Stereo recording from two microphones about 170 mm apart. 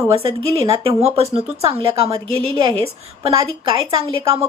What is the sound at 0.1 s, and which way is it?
A woman's voice, 35° right (ahead or behind).